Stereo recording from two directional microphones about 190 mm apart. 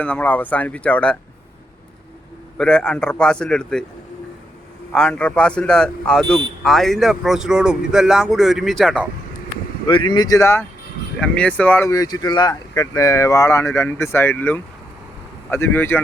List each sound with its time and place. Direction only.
0.0 s speech: 10° left (ahead or behind)
2.6 s speech: 5° left (ahead or behind)
4.9 s speech: 5° left (ahead or behind)
9.8 s speech: 25° left (ahead or behind)